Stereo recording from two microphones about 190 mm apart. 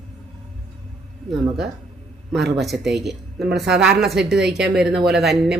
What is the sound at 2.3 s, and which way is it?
Speech, centre (ahead or behind).